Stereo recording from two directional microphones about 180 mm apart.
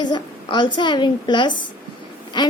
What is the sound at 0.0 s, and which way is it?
A woman's voice, 25° left (ahead or behind).